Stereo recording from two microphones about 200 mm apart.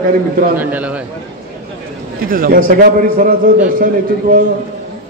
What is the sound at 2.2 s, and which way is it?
A man's voice, 45° right (ahead or behind).